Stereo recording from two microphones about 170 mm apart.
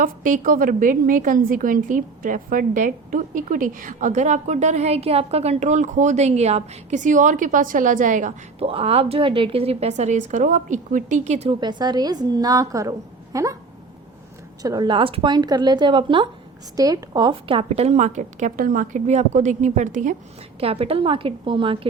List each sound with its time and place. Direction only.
0.0 s a woman's voice: 50° right (ahead or behind)
11.6 s a woman's voice: 25° right (ahead or behind)
14.6 s a woman's voice: 25° right (ahead or behind); by 20.1 s 45° right (ahead or behind)
20.6 s a woman's voice: 35° right (ahead or behind)